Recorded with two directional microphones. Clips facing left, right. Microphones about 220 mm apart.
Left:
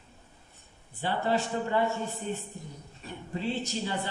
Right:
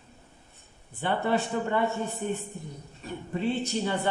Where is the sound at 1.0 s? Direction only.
55° right (ahead or behind).